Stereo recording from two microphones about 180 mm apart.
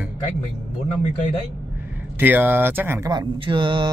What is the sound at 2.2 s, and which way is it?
Speech, 10° right (ahead or behind).